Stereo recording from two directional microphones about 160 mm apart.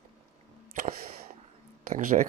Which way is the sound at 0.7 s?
55° right (ahead or behind).